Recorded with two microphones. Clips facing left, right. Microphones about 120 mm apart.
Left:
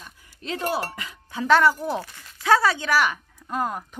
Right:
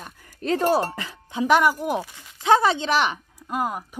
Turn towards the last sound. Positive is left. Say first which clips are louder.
# right 1 dB
turn(degrees=-10)  # may be behind; listen again after turning